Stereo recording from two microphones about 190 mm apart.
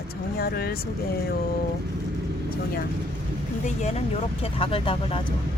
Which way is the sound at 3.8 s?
35° left (ahead or behind).